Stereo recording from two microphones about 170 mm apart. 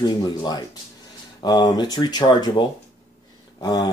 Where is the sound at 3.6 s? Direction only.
25° left (ahead or behind).